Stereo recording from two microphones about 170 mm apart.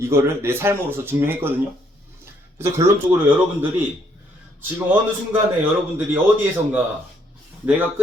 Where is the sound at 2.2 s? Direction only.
15° right (ahead or behind).